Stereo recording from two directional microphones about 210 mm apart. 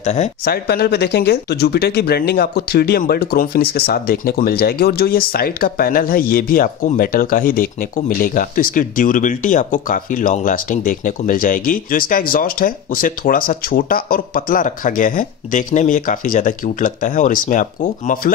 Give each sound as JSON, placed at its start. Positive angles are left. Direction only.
{"t": 0.0, "sound": "speech", "side_deg": 35}
{"t": 0.5, "sound": "speech", "side_deg": 50}